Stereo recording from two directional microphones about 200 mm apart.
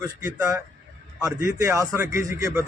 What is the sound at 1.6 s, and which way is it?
Speech, 15° right (ahead or behind).